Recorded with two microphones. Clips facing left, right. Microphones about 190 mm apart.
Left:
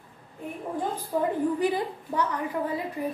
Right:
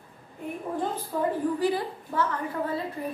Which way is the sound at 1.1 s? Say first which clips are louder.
Left 2 dB; 15° left (ahead or behind).